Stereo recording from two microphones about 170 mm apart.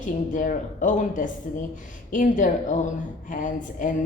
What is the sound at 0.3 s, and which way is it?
Speech, 50° left (ahead or behind).